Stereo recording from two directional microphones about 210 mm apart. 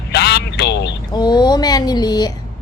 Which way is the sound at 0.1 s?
55° left (ahead or behind).